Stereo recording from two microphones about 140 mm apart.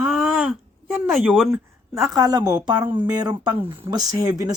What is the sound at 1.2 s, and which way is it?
Speech, centre (ahead or behind).